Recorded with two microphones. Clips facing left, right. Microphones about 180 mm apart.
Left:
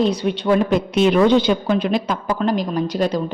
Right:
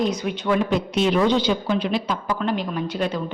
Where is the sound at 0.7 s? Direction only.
55° left (ahead or behind); by 3.2 s 40° left (ahead or behind).